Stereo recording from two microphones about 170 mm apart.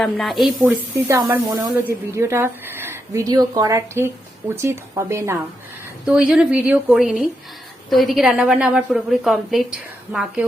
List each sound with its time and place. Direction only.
0.0 s a woman's voice: centre (ahead or behind)
1.0 s speech: 20° right (ahead or behind)
6.1 s a woman's voice: 5° right (ahead or behind)